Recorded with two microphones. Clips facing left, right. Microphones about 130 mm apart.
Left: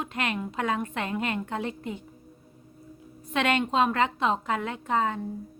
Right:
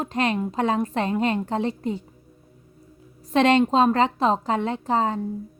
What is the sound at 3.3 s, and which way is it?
Speech, 35° right (ahead or behind).